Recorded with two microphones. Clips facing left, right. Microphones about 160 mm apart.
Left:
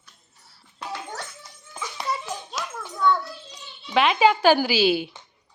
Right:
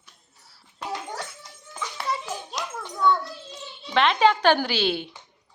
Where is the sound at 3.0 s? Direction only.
Centre (ahead or behind).